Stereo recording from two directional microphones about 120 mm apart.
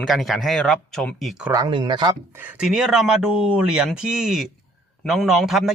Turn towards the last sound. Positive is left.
turn(degrees=0)  # may be behind; listen again after turning